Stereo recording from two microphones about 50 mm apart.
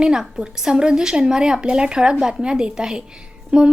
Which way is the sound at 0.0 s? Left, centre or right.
Centre.